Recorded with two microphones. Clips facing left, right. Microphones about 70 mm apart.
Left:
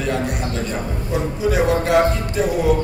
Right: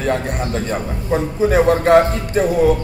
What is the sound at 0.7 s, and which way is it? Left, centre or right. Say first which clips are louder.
A man's voice: right 4 dB; right.